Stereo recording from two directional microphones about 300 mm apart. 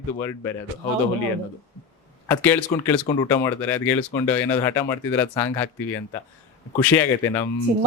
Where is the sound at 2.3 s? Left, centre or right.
Centre.